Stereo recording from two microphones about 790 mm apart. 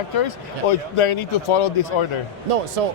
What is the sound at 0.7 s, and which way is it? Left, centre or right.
A man's voice, left.